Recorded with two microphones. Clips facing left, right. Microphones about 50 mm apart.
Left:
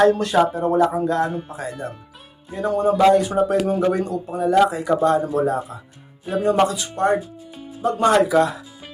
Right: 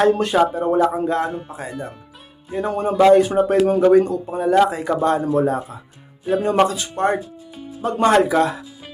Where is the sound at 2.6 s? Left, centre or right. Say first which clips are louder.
Even; right.